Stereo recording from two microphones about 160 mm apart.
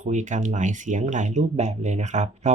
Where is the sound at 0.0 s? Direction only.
50° right (ahead or behind).